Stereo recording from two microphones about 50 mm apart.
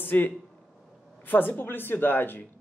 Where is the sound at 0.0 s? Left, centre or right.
Left.